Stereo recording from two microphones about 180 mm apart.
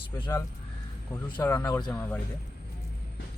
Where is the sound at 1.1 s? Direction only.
15° left (ahead or behind).